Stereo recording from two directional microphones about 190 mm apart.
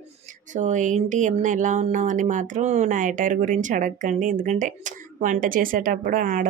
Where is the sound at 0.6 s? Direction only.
40° right (ahead or behind).